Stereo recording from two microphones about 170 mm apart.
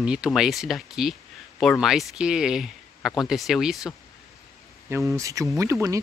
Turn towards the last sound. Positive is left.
turn(degrees=5)  # may be behind; listen again after turning